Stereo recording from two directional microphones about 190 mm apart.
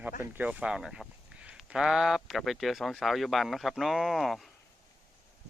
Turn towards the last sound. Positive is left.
turn(degrees=0)  # may be behind; listen again after turning